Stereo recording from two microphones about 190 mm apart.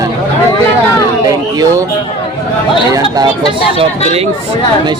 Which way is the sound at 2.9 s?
20° right (ahead or behind).